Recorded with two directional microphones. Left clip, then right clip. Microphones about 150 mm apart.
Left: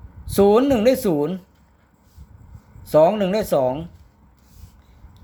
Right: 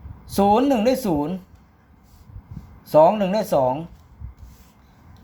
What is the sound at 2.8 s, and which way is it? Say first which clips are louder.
Speech: even; 30° left (ahead or behind).